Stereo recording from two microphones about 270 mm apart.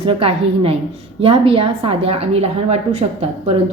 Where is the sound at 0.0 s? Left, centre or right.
Right.